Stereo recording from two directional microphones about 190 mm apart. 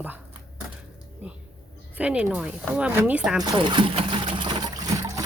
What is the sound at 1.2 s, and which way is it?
A woman's voice, 10° right (ahead or behind).